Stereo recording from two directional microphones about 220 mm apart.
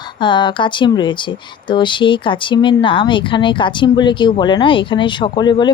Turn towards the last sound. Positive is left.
turn(degrees=20)  # may be behind; listen again after turning